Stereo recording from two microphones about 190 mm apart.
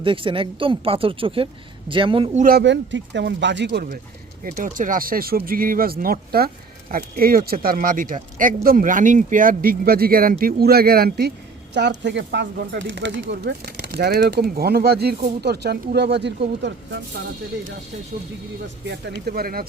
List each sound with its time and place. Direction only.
0.0 s speech: 25° right (ahead or behind)
2.4 s speech: 55° right (ahead or behind)
4.4 s speech: 45° right (ahead or behind)
11.7 s speech: 65° right (ahead or behind)
18.9 s speech: 55° right (ahead or behind)